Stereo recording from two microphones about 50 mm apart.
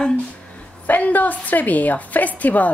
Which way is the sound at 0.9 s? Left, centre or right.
Left.